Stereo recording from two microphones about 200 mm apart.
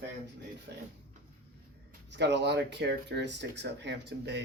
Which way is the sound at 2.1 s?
60° right (ahead or behind).